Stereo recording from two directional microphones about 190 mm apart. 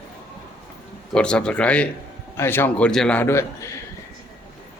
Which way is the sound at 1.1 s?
5° left (ahead or behind).